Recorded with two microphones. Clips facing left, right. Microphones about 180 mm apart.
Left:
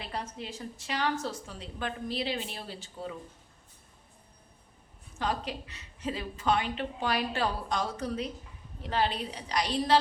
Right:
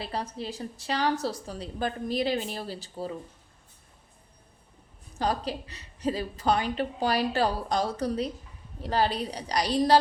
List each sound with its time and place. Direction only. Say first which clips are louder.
0.0 s a woman's voice: right 5 dB; 35° right (ahead or behind)
5.1 s a woman's voice: right 4 dB; 35° right (ahead or behind)